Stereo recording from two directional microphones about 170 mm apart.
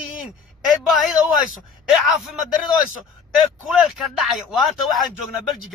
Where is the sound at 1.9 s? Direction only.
Centre (ahead or behind).